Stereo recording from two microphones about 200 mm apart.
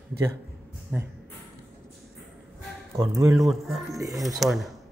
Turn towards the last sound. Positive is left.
turn(degrees=0)  # may be behind; listen again after turning